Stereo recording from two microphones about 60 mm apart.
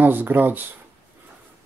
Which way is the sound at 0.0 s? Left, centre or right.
Right.